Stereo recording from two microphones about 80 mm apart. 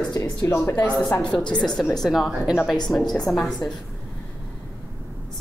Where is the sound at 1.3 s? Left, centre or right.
Centre.